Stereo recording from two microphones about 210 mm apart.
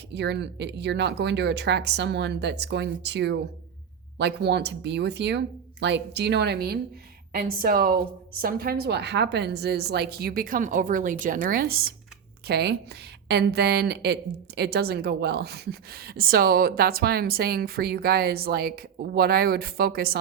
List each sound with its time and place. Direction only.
0.1 s a woman's voice: 55° right (ahead or behind)